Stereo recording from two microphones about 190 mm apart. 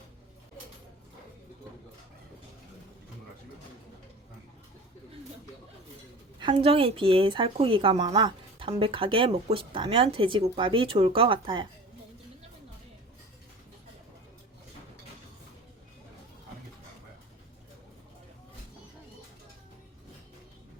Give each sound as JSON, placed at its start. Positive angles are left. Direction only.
{"t": 6.4, "sound": "speech", "side_deg": -30}